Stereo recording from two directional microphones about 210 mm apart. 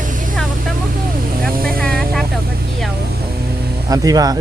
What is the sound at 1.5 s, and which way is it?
Vehicle, 45° right (ahead or behind).